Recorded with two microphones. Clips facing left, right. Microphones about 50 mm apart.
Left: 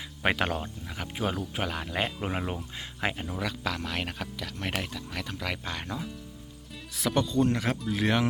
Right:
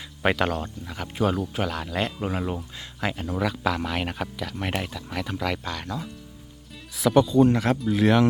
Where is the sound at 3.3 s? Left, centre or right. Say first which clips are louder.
Right 7 dB; centre.